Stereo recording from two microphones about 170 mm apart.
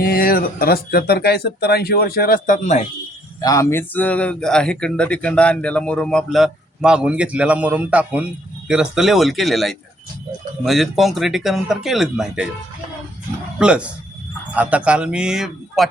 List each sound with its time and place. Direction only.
0.0 s speech: 60° left (ahead or behind)
3.4 s speech: 20° left (ahead or behind); by 12.5 s 5° right (ahead or behind)
13.6 s speech: 5° right (ahead or behind)